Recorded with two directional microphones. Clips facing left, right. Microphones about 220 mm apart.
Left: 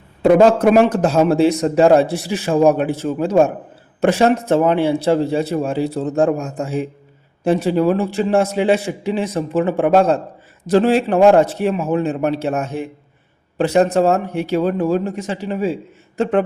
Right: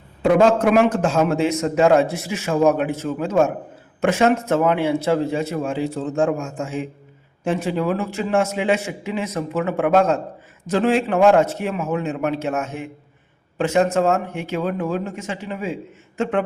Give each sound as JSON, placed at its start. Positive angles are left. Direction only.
{"t": 0.2, "sound": "a man's voice", "side_deg": 35}